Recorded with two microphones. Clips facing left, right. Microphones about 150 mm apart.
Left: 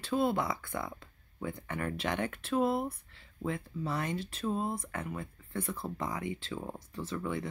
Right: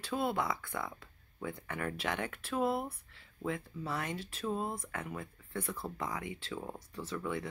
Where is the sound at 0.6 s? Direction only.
15° left (ahead or behind); by 2.5 s 5° right (ahead or behind).